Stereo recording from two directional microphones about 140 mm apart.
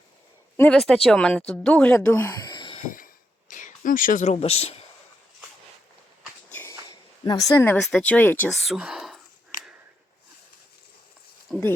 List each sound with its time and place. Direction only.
0.5 s speech: 10° left (ahead or behind)
0.8 s speech: centre (ahead or behind)
2.4 s a sound: 30° left (ahead or behind)
3.5 s speech: 70° left (ahead or behind); by 4.8 s 45° left (ahead or behind)
6.5 s walk: 15° left (ahead or behind)
7.3 s a woman's voice: 25° left (ahead or behind)
7.8 s speech: 5° left (ahead or behind)
8.4 s speech: centre (ahead or behind)
11.5 s speech: 5° left (ahead or behind)